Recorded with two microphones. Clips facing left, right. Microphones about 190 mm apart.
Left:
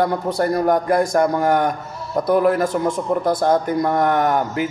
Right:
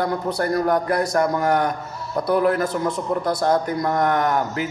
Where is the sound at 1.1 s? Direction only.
25° left (ahead or behind).